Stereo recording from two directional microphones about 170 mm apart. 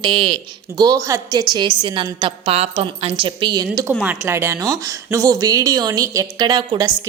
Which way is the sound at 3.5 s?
20° right (ahead or behind).